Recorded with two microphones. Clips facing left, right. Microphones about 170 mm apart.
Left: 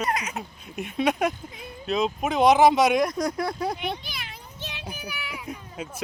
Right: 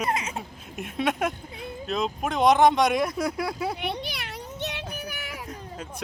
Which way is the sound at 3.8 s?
70° right (ahead or behind).